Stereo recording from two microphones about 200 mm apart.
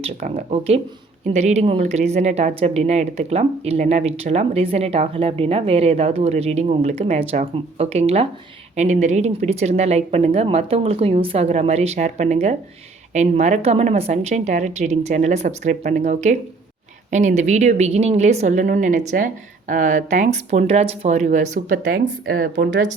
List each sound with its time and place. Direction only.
0.0 s speech: 30° right (ahead or behind)